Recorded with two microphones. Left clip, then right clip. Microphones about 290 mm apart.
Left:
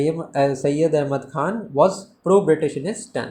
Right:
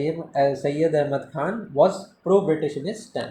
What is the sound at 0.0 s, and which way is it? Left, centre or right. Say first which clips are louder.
Speech: left 2 dB; left.